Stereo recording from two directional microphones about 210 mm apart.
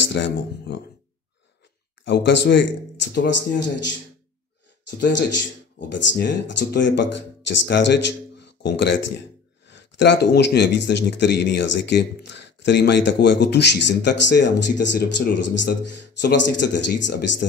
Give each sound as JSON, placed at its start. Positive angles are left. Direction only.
{"t": 0.1, "sound": "speech", "side_deg": 55}
{"t": 2.0, "sound": "speech", "side_deg": 55}
{"t": 5.9, "sound": "speech", "side_deg": 55}